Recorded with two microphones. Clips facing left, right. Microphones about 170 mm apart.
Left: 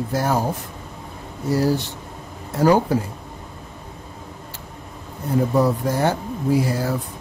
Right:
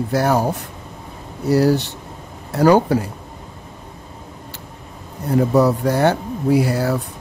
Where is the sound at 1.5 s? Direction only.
70° right (ahead or behind).